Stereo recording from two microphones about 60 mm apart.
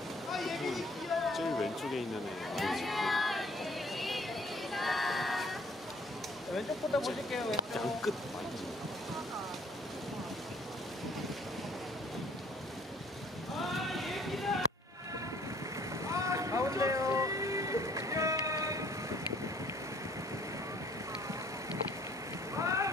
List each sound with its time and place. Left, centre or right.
0.3 s a sound: centre
4.7 s music: centre
6.5 s speech: centre
13.6 s a sound: centre
16.1 s boat: right
22.6 s boat: right